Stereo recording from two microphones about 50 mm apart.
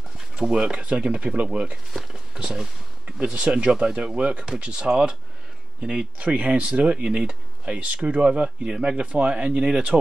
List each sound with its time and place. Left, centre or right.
0.4 s speech: centre
2.3 s speech: centre
6.1 s speech: right